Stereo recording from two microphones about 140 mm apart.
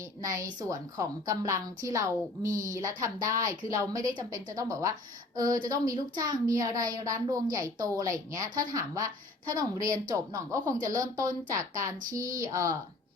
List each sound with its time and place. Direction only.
0.2 s a woman's voice: 20° right (ahead or behind)